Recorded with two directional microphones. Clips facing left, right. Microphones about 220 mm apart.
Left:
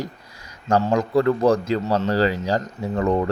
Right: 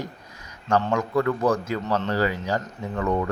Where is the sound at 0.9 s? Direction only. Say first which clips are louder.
Left 4 dB; 35° left (ahead or behind).